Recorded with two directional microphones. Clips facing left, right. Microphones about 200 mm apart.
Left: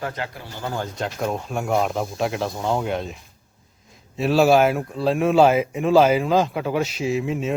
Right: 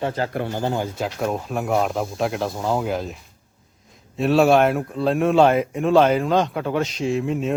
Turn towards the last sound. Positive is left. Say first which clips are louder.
# right 1 dB
turn(degrees=0)  # may be behind; listen again after turning